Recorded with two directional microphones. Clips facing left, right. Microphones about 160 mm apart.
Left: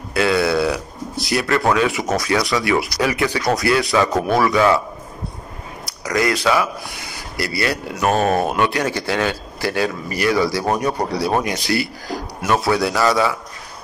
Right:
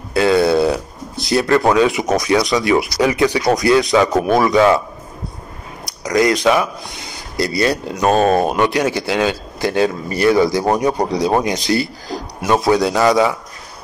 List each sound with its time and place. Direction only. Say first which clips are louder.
0.1 s speech: right 4 dB; 25° right (ahead or behind)
6.1 s speech: right 4 dB; 20° right (ahead or behind)